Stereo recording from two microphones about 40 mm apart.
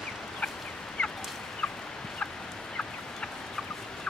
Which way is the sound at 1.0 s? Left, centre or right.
Left.